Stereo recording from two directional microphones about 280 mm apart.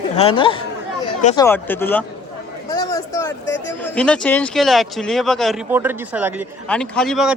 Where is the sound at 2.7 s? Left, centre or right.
Centre.